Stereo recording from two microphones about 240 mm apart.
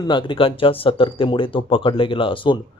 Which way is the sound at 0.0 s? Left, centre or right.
Centre.